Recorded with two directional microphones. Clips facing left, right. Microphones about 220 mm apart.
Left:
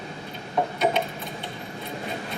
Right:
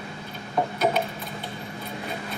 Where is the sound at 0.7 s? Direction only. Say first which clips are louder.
Even; centre (ahead or behind).